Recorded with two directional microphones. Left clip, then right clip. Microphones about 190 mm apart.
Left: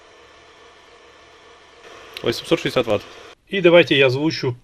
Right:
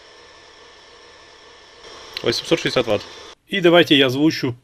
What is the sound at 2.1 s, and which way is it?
Speech, 5° left (ahead or behind).